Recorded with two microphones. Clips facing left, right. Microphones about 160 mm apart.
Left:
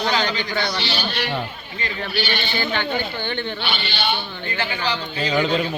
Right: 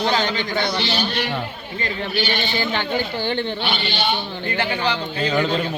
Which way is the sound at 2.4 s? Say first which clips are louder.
Right 1 dB; 30° right (ahead or behind).